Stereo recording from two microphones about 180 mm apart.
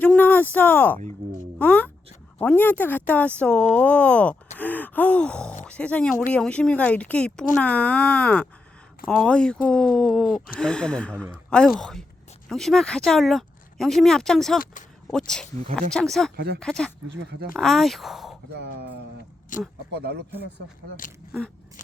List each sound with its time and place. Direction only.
0.0 s speech: 10° left (ahead or behind)
14.6 s speech: 45° left (ahead or behind)
15.1 s speech: 5° left (ahead or behind)
19.5 s speech: 45° left (ahead or behind)
19.9 s speech: 65° right (ahead or behind)